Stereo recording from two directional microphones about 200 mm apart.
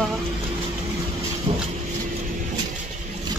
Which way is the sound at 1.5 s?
35° right (ahead or behind).